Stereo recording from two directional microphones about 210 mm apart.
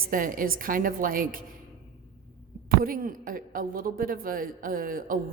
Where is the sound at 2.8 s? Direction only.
40° right (ahead or behind).